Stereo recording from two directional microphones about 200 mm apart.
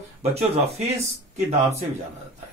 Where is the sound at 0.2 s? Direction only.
30° right (ahead or behind).